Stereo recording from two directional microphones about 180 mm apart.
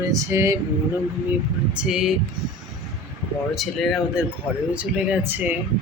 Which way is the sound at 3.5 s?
Centre (ahead or behind).